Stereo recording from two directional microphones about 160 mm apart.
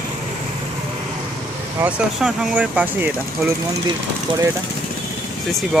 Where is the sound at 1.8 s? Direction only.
5° right (ahead or behind).